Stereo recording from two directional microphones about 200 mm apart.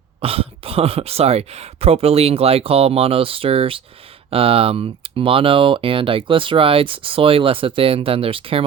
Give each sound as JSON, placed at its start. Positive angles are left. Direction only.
{"t": 0.2, "sound": "speech", "side_deg": -30}